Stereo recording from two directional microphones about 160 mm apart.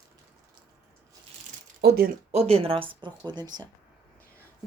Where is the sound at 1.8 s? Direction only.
75° right (ahead or behind).